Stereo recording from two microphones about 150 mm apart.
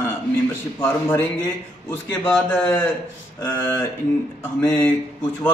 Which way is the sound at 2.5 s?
10° left (ahead or behind).